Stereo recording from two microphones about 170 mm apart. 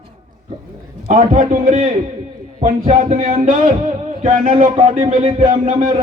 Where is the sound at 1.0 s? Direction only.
45° right (ahead or behind).